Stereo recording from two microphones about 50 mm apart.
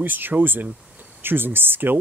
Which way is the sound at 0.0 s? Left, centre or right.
Right.